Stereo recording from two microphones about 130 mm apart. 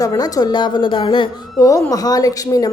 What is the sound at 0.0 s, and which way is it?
A woman's voice, 30° left (ahead or behind).